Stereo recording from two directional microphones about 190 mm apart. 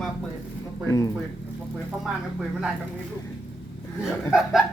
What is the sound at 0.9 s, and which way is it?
Speech, 20° left (ahead or behind).